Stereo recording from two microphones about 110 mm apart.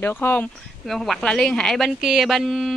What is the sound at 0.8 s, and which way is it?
A woman's voice, centre (ahead or behind).